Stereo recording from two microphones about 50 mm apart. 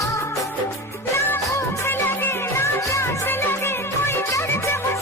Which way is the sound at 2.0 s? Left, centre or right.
Left.